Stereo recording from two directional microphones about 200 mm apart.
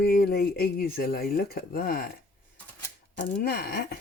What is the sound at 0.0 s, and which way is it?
Speech, 50° left (ahead or behind).